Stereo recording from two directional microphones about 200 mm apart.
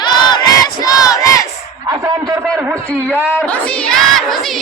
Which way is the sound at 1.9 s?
15° right (ahead or behind).